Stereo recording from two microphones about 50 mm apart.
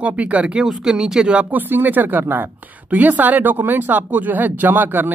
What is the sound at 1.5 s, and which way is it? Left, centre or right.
Speech, right.